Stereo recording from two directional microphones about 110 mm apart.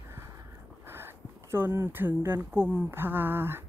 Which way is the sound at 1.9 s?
20° right (ahead or behind).